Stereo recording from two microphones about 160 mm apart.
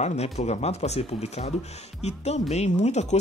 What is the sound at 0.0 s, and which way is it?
Speech, 45° left (ahead or behind).